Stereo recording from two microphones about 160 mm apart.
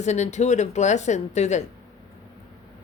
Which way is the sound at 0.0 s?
45° left (ahead or behind).